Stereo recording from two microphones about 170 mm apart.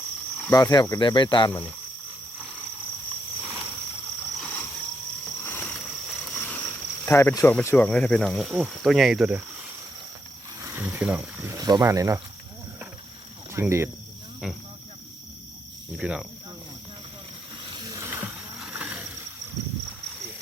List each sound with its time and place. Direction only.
0.5 s speech: 20° left (ahead or behind)
3.4 s cricket: 10° right (ahead or behind)
4.4 s a sound: 10° left (ahead or behind)
6.4 s speech: 10° left (ahead or behind); by 9.4 s 5° right (ahead or behind)
10.6 s speech: 15° right (ahead or behind)
13.5 s speech: 15° right (ahead or behind)
14.4 s speech: 5° right (ahead or behind)
16.0 s speech: 5° right (ahead or behind)
17.6 s a sound: 25° right (ahead or behind); by 19.0 s 5° right (ahead or behind)